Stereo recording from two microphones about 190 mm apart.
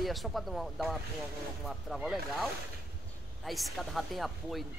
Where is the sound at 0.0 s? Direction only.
Centre (ahead or behind).